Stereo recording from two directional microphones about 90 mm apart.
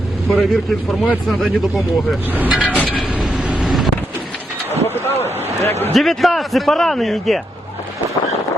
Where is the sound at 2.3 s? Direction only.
20° right (ahead or behind).